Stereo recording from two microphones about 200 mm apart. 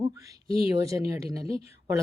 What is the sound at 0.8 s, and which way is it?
Speech, 15° right (ahead or behind).